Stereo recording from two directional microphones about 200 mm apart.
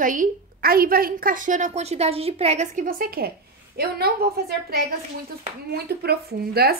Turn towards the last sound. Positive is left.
turn(degrees=-50)  # may be behind; listen again after turning